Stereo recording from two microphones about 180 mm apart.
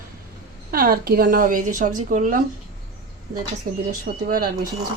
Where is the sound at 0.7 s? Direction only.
55° right (ahead or behind).